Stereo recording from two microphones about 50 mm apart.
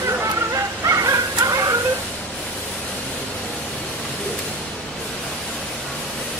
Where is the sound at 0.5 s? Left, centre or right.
Right.